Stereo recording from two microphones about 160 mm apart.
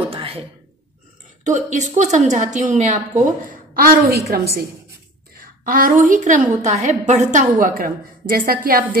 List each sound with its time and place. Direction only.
0.1 s a sound: 35° right (ahead or behind)
1.4 s a woman's voice: 50° right (ahead or behind); by 4.6 s 75° right (ahead or behind)
5.4 s a woman's voice: 60° right (ahead or behind)